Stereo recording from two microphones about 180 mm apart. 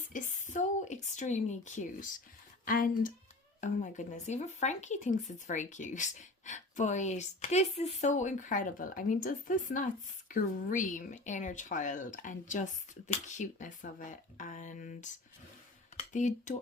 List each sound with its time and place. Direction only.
0.1 s speech: 45° left (ahead or behind)